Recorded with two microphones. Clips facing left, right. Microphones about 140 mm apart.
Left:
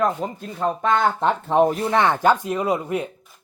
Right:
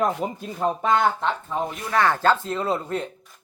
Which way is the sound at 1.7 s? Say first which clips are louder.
Left 3 dB; 30° left (ahead or behind).